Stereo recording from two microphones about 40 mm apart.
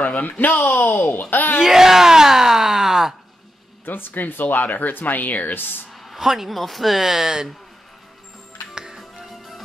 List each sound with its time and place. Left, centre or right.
0.0 s speech: left
1.6 s speech: centre
3.8 s speech: left
5.9 s speech: centre
8.7 s music: centre
9.2 s music: centre